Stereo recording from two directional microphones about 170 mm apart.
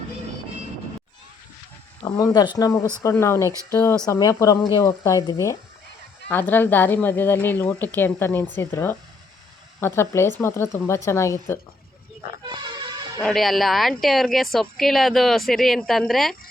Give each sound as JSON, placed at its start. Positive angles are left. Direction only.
{"t": 2.0, "sound": "a woman's voice", "side_deg": 25}
{"t": 12.6, "sound": "music", "side_deg": -25}
{"t": 13.1, "sound": "a woman's voice", "side_deg": 5}